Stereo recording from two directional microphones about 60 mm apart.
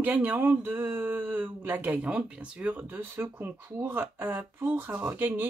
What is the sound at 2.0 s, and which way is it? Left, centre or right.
Speech, right.